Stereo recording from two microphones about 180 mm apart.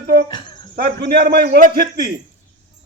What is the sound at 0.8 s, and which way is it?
A man's voice, 60° right (ahead or behind).